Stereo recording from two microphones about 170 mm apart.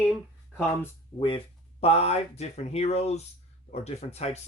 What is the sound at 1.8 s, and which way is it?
Speech, 35° left (ahead or behind).